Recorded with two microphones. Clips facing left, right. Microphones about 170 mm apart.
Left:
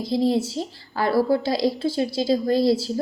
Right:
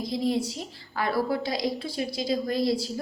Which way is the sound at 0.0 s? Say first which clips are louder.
Left 5 dB; 30° left (ahead or behind).